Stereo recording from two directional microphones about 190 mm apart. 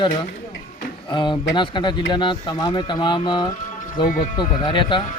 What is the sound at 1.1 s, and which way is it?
Speech, 25° left (ahead or behind).